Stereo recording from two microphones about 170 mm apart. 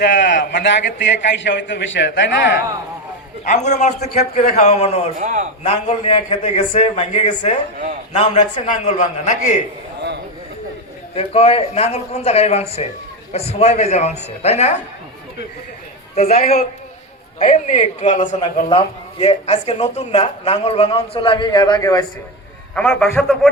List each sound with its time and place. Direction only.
0.0 s a man's voice: 85° left
3.4 s a man's voice: 45° left (ahead or behind)
5.2 s a man's voice: 45° right (ahead or behind)
5.6 s a man's voice: 40° left (ahead or behind)
11.1 s a man's voice: 35° left (ahead or behind)
16.1 s a man's voice: 40° left (ahead or behind)
19.2 s a man's voice: 35° left (ahead or behind); by 22.0 s 20° left (ahead or behind)
22.7 s a man's voice: 5° left (ahead or behind)